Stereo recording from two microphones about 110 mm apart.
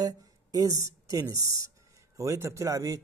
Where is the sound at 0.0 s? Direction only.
35° right (ahead or behind).